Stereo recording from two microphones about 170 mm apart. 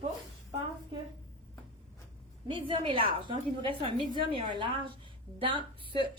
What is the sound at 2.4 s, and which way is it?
A woman's voice, 30° right (ahead or behind).